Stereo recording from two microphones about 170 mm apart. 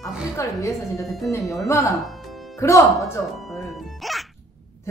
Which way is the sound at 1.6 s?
20° left (ahead or behind).